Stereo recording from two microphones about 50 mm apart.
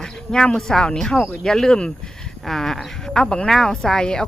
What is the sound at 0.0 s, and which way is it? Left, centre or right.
A woman's voice, centre.